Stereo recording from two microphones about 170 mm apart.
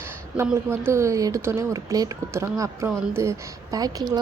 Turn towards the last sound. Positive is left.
turn(degrees=-25)  # may be behind; listen again after turning